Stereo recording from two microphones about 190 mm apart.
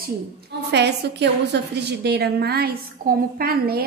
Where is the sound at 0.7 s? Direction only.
65° right (ahead or behind).